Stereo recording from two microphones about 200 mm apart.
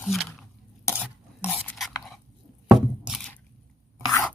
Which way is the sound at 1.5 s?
5° left (ahead or behind).